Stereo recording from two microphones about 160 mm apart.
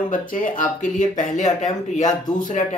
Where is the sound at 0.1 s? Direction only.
55° left (ahead or behind).